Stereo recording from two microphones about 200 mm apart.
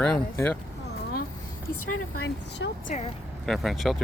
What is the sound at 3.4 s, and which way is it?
Speech, centre (ahead or behind).